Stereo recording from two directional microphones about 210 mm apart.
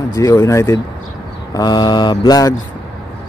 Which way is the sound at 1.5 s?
20° left (ahead or behind).